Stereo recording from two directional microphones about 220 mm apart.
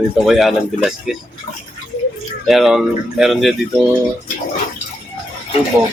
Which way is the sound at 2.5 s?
Centre (ahead or behind).